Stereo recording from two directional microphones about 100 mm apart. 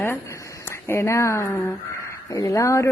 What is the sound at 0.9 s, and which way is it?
A woman's voice, 25° left (ahead or behind).